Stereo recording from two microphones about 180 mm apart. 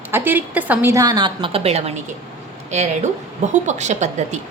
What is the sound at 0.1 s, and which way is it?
A woman's voice, 10° right (ahead or behind).